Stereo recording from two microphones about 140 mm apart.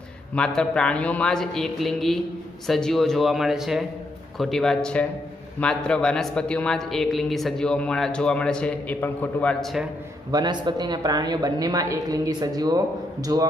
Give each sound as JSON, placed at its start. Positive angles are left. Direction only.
{"t": 0.3, "sound": "a man's voice", "side_deg": 5}
{"t": 10.3, "sound": "a woman's voice", "side_deg": -30}